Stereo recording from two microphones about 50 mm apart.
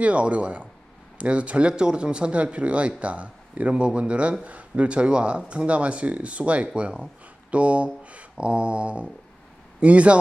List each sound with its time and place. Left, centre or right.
0.0 s speech: right